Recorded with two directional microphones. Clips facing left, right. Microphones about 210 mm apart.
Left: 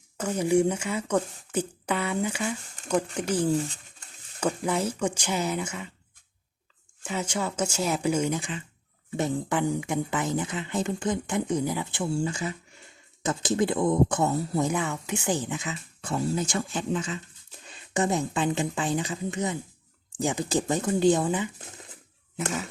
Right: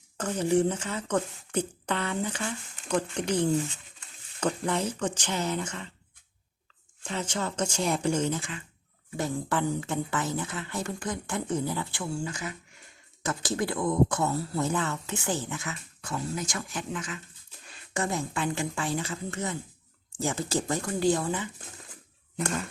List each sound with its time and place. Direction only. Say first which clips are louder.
0.2 s speech: left 2 dB; 10° left (ahead or behind)
7.0 s speech: left 2 dB; 10° left (ahead or behind)
22.4 s speech: even; 5° left (ahead or behind)